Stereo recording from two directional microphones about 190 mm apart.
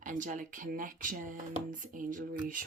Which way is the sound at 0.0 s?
45° right (ahead or behind).